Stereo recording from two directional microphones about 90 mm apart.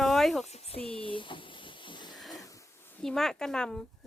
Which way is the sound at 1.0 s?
75° left (ahead or behind).